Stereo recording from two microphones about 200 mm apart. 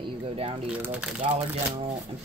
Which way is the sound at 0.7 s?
5° right (ahead or behind).